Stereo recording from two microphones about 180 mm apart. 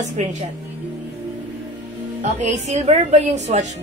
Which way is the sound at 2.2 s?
40° right (ahead or behind).